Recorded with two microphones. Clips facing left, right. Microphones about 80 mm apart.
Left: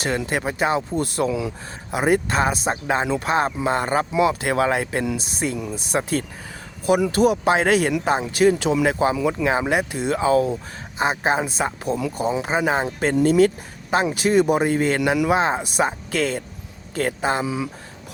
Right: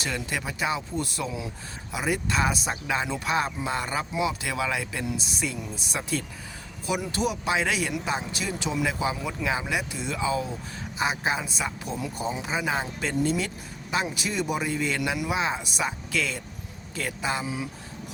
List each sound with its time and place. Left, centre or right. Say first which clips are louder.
0.3 s speech: left 6 dB; left
1.3 s speech: left 10 dB; left
1.9 s speech: left 8 dB; left
10.9 s speech: left 6 dB; left